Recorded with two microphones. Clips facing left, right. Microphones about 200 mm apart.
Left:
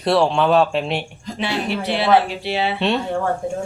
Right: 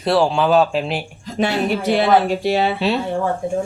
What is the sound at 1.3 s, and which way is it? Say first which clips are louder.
Speech: right 4 dB; 45° right (ahead or behind).